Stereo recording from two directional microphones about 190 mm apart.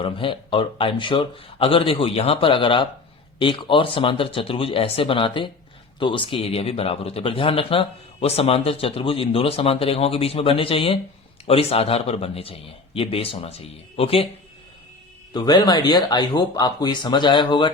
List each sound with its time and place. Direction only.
0.0 s a man's voice: 25° left (ahead or behind)
15.3 s speech: 20° left (ahead or behind)